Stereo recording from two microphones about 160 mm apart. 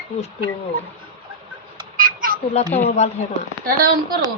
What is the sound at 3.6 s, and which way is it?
Speech, 65° right (ahead or behind).